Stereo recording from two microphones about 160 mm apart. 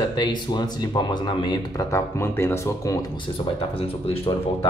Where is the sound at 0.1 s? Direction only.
25° left (ahead or behind).